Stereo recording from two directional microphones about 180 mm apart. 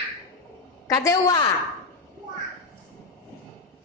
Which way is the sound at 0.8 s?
20° left (ahead or behind).